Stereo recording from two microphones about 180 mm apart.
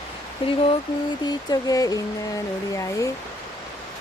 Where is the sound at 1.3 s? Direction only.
20° left (ahead or behind).